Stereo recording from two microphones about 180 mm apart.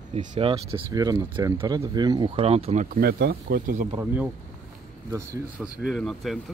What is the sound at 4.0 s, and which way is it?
Speech, 10° right (ahead or behind).